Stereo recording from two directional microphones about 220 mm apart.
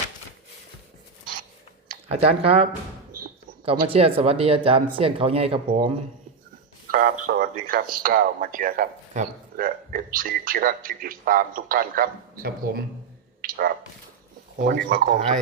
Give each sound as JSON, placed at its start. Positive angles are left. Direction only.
{"t": 2.0, "sound": "speech", "side_deg": -25}
{"t": 3.7, "sound": "speech", "side_deg": -25}
{"t": 5.6, "sound": "speech", "side_deg": -35}
{"t": 6.9, "sound": "speech", "side_deg": -40}
{"t": 13.4, "sound": "a sound", "side_deg": -40}
{"t": 14.8, "sound": "speech", "side_deg": -50}